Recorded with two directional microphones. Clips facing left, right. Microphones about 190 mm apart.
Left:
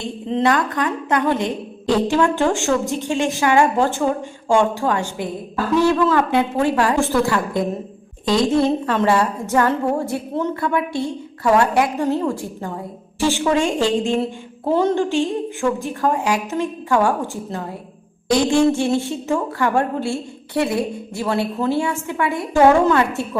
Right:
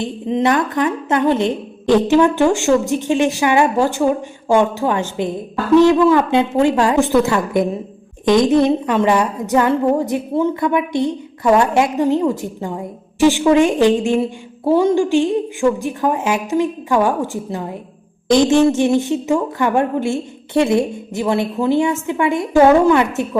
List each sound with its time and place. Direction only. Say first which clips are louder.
0.0 s a woman's voice: right 2 dB; 15° right (ahead or behind)